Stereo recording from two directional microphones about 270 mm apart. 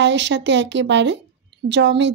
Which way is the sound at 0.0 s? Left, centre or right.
Right.